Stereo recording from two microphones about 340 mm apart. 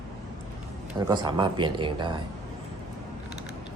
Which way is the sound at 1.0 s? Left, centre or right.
Centre.